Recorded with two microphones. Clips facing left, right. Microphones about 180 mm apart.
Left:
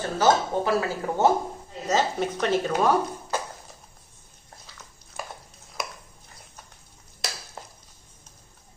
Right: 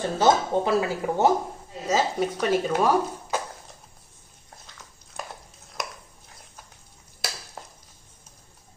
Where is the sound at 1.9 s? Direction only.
10° right (ahead or behind).